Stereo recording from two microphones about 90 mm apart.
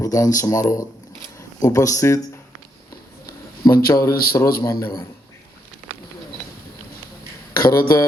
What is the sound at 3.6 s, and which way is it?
Speech, 40° left (ahead or behind).